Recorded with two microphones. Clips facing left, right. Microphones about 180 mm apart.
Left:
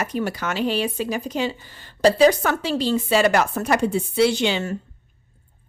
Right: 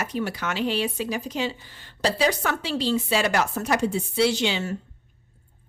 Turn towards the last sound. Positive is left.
turn(degrees=50)  # may be behind; listen again after turning